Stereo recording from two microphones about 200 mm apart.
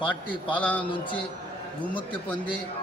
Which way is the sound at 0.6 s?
5° left (ahead or behind).